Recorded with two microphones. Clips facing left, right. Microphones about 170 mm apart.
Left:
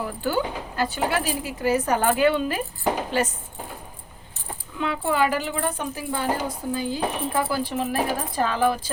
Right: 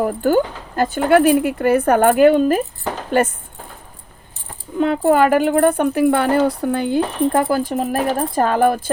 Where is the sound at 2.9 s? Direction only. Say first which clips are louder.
Left 1 dB; 15° left (ahead or behind).